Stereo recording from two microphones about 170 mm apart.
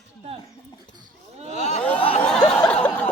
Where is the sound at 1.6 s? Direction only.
40° left (ahead or behind).